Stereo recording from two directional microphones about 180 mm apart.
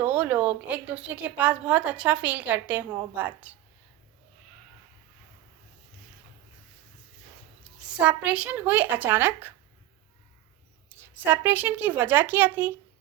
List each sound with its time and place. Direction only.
0.0 s a woman's voice: 10° right (ahead or behind)
7.9 s a woman's voice: 5° right (ahead or behind)
11.0 s a woman's voice: 10° right (ahead or behind)